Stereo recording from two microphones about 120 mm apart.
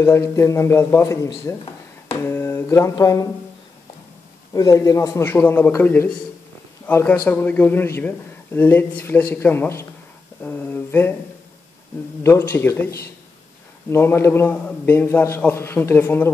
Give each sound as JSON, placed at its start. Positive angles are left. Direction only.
{"t": 0.0, "sound": "a man's voice", "side_deg": 20}
{"t": 2.1, "sound": "a sound", "side_deg": 20}
{"t": 3.0, "sound": "a man's voice", "side_deg": 30}
{"t": 4.6, "sound": "a man's voice", "side_deg": 30}
{"t": 10.4, "sound": "a sound", "side_deg": 15}
{"t": 12.2, "sound": "a man's voice", "side_deg": 20}